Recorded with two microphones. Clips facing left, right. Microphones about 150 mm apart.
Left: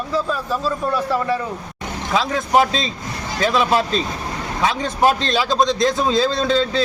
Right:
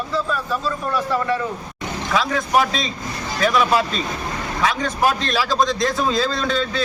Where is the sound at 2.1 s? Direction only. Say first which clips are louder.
Left 2 dB; 25° left (ahead or behind).